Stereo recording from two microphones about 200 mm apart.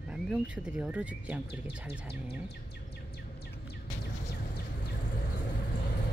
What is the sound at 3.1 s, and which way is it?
Bird, 55° left (ahead or behind).